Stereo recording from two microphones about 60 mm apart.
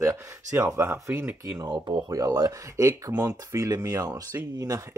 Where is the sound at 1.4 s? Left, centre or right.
Right.